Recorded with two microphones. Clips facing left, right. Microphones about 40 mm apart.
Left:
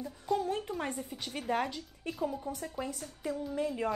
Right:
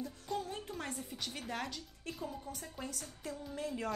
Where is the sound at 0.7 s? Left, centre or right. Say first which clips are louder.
Left 6 dB; centre.